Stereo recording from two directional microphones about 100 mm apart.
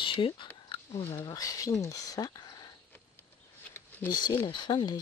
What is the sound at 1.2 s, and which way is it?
Speech, 40° left (ahead or behind).